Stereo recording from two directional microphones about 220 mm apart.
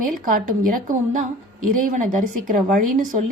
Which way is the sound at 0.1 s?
35° right (ahead or behind).